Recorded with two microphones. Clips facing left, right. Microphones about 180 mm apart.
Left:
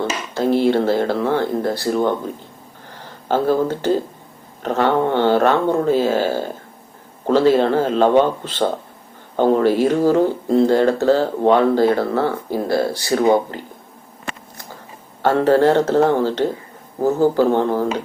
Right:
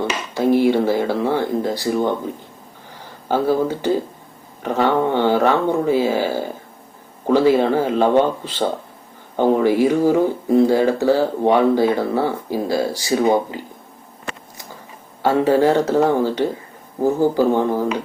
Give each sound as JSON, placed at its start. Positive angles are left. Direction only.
{"t": 0.0, "sound": "speech", "side_deg": -15}
{"t": 3.0, "sound": "speech", "side_deg": -10}
{"t": 15.2, "sound": "speech", "side_deg": -15}